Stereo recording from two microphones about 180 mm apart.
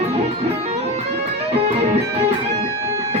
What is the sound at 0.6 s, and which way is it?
Music, 35° right (ahead or behind).